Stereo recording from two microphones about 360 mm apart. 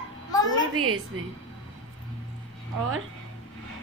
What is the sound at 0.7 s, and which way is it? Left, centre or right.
Speech, right.